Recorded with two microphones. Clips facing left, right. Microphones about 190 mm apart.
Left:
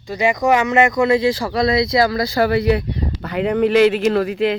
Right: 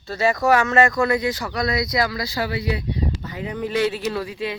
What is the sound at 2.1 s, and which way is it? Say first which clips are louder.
Speech: left 9 dB; 55° left (ahead or behind).